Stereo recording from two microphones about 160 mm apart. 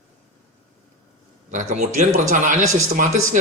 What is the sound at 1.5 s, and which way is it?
Speech, 50° right (ahead or behind).